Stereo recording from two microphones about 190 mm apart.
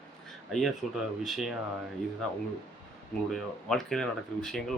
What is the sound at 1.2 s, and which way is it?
Speech, centre (ahead or behind).